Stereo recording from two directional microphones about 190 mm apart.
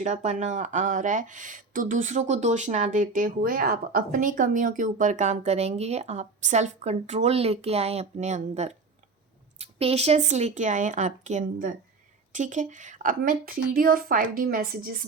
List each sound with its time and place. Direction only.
0.0 s a woman's voice: 40° right (ahead or behind)